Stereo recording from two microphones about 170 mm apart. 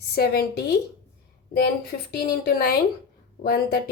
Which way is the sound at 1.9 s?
70° left (ahead or behind).